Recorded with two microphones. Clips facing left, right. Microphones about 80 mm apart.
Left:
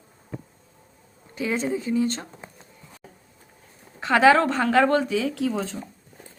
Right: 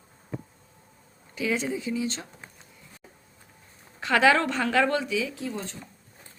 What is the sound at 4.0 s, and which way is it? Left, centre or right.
A woman's voice, left.